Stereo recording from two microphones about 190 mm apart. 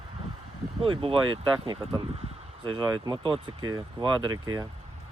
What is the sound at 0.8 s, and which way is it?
Speech, 30° right (ahead or behind).